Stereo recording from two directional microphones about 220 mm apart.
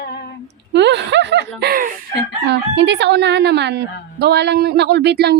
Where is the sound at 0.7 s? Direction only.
50° right (ahead or behind).